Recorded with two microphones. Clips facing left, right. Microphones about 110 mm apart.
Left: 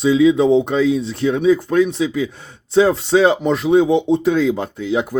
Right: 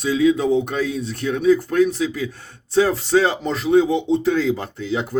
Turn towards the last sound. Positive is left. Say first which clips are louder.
# left 4 dB
turn(degrees=15)  # may be behind; listen again after turning